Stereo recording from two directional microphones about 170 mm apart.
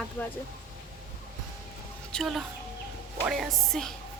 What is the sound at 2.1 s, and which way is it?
Speech, centre (ahead or behind).